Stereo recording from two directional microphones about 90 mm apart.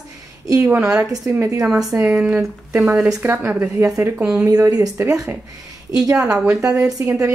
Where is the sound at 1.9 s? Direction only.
35° right (ahead or behind).